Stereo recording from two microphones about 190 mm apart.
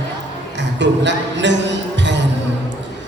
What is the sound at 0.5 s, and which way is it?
Music, 70° right (ahead or behind).